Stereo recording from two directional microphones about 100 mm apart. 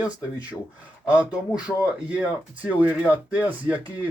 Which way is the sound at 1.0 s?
15° right (ahead or behind).